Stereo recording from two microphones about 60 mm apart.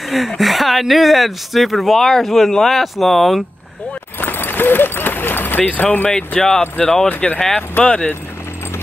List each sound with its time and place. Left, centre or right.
0.1 s speech: centre
4.2 s run: left
5.7 s speech: left